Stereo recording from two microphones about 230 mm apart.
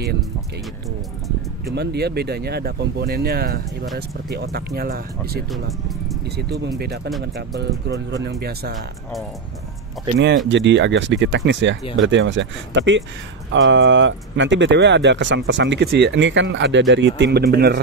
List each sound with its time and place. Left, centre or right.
1.8 s speech: right
7.9 s speech: right
10.1 s speech: right